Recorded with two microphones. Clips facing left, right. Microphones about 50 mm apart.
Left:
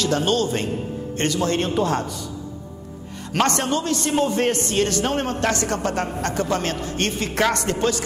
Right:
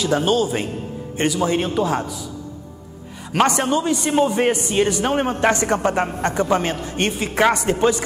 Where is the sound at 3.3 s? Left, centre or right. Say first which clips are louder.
Right 3 dB; centre.